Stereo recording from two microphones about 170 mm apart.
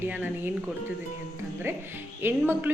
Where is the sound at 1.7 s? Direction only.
15° right (ahead or behind).